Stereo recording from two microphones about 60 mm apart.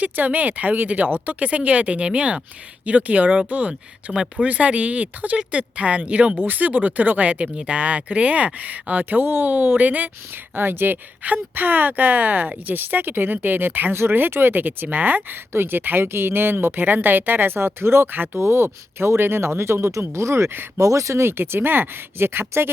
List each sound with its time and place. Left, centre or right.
0.0 s speech: right
4.1 s speech: centre
4.4 s speech: right
18.3 s speech: right